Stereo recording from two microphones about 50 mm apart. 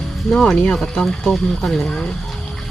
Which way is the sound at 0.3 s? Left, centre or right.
Centre.